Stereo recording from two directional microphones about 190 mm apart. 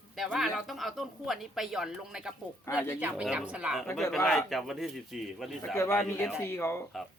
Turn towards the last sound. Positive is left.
turn(degrees=15)  # may be behind; listen again after turning